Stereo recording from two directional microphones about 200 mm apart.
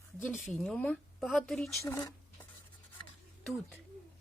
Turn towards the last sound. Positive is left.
turn(degrees=0)  # may be behind; listen again after turning